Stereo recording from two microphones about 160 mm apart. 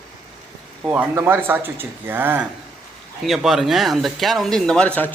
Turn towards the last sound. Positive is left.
turn(degrees=10)  # may be behind; listen again after turning